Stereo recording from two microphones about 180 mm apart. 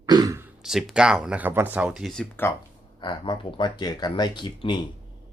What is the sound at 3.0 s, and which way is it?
Speech, 25° left (ahead or behind).